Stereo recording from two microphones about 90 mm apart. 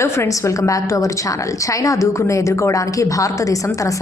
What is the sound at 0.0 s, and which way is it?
A woman's voice, 30° left (ahead or behind).